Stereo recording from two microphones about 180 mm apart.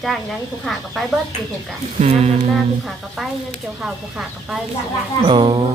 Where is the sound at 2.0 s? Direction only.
35° right (ahead or behind).